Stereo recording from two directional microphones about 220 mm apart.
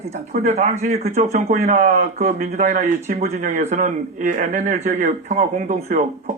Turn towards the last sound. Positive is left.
turn(degrees=-30)  # may be behind; listen again after turning